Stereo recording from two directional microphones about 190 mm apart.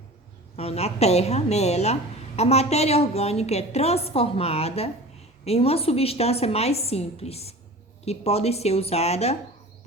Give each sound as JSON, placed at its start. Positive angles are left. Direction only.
{"t": 0.5, "sound": "a woman's voice", "side_deg": 35}